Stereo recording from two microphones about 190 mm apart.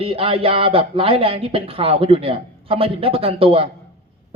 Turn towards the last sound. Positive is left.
turn(degrees=-30)  # may be behind; listen again after turning